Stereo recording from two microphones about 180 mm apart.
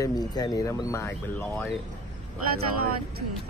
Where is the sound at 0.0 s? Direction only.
20° left (ahead or behind).